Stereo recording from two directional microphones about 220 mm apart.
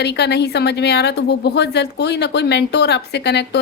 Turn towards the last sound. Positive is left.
turn(degrees=50)  # may be behind; listen again after turning